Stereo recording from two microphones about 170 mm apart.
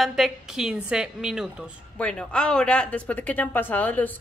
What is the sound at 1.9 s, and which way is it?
A woman's voice, 5° left (ahead or behind).